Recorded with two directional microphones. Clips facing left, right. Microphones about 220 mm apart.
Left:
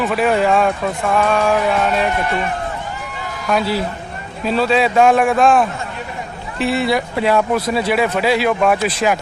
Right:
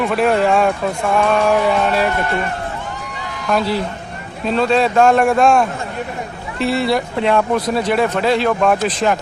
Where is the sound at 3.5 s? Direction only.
5° left (ahead or behind).